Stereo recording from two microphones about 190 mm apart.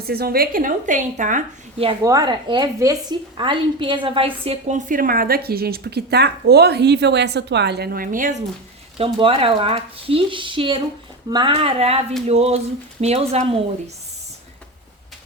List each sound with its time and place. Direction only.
0.1 s a woman's voice: 55° right (ahead or behind)
1.8 s speech: 25° right (ahead or behind)
4.9 s speech: 50° right (ahead or behind)
9.0 s speech: 30° right (ahead or behind)